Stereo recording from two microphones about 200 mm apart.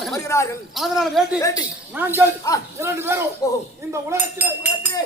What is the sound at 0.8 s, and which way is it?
Speech, centre (ahead or behind).